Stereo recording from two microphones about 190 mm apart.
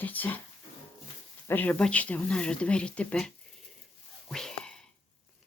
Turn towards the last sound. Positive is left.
turn(degrees=5)  # may be behind; listen again after turning